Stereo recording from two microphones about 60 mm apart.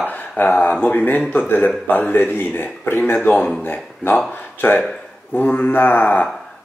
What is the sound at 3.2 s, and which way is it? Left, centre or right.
Speech, centre.